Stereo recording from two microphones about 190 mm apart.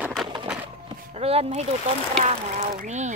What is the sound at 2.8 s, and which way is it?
Speech, 40° right (ahead or behind).